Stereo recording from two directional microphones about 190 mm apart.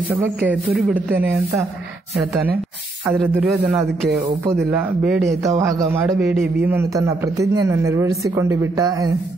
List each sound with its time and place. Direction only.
0.1 s a man's voice: 10° right (ahead or behind)
3.3 s speech: centre (ahead or behind)
4.3 s a man's voice: 15° right (ahead or behind)
5.6 s a man's voice: 15° right (ahead or behind)
6.1 s speech: centre (ahead or behind)
6.7 s a man's voice: 15° right (ahead or behind)